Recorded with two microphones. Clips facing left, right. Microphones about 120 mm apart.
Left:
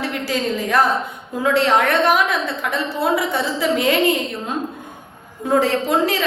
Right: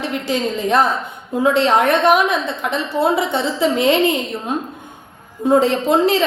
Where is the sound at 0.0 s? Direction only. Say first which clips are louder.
Right 2 dB; 20° right (ahead or behind).